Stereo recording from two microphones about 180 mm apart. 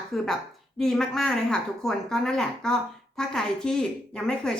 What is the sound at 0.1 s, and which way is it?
Speech, centre (ahead or behind).